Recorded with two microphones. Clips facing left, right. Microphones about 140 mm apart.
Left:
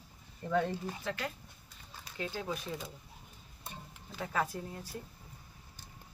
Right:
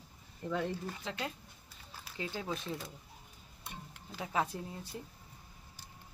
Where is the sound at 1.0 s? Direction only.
25° right (ahead or behind).